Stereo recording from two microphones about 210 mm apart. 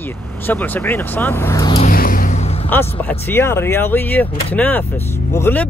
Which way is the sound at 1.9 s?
45° left (ahead or behind).